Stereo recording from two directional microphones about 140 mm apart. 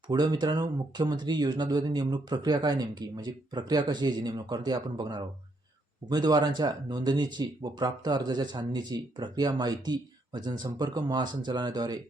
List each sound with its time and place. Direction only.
0.1 s speech: 30° right (ahead or behind)